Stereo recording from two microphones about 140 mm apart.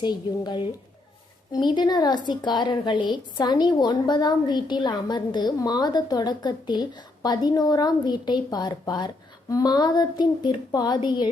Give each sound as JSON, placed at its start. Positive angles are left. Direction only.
{"t": 0.0, "sound": "a woman's voice", "side_deg": 30}